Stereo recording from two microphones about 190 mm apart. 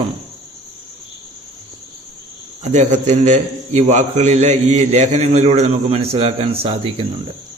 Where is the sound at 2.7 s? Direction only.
35° right (ahead or behind).